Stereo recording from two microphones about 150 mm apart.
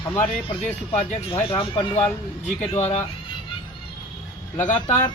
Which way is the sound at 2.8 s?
45° left (ahead or behind).